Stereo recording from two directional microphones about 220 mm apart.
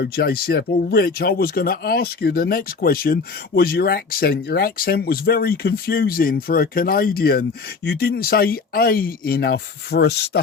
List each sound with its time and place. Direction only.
0.0 s speech: 45° left (ahead or behind)